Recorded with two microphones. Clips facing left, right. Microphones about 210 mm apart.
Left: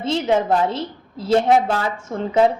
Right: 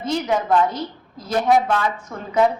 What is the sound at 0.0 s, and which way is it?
A woman's voice, 25° left (ahead or behind).